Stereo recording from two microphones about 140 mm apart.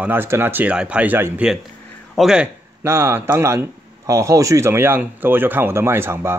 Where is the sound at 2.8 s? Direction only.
20° right (ahead or behind).